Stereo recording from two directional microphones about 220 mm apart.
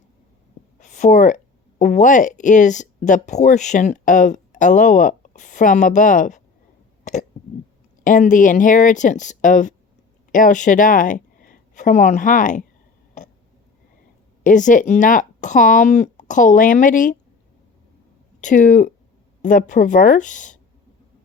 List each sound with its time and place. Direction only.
0.8 s a sound: 35° left (ahead or behind)
1.8 s speech: 35° left (ahead or behind)
7.0 s hiccup: 35° left (ahead or behind)
8.0 s a woman's voice: 35° left (ahead or behind)
14.4 s speech: 35° left (ahead or behind)
18.3 s speech: 35° left (ahead or behind)